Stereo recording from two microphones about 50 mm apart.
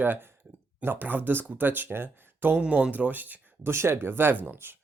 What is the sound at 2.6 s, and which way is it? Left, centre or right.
Speech, right.